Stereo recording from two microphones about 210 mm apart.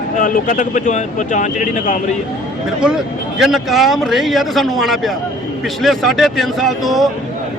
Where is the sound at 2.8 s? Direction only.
5° right (ahead or behind).